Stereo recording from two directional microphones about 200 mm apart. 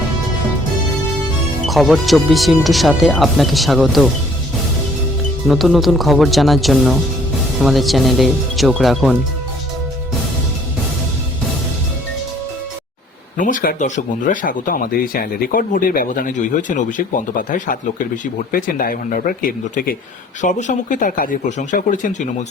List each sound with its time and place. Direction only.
1.6 s speech: centre (ahead or behind)
5.5 s speech: centre (ahead or behind)
13.3 s speech: 40° left (ahead or behind)